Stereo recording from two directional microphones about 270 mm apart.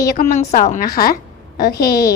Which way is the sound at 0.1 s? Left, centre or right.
Left.